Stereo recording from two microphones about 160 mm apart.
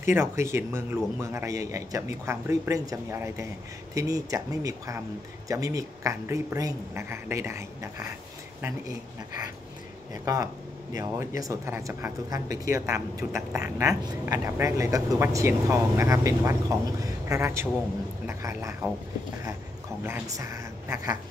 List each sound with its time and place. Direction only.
0.0 s speech: 15° right (ahead or behind)
10.2 s speech: 20° right (ahead or behind)
20.0 s speech: 20° right (ahead or behind)